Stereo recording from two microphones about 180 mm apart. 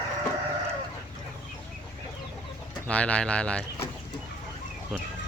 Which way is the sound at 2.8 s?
5° left (ahead or behind).